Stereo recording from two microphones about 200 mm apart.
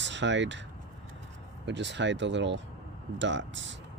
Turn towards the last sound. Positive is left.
turn(degrees=-65)  # may be behind; listen again after turning